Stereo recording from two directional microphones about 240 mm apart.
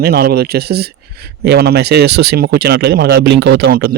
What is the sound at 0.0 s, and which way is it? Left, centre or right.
Speech, right.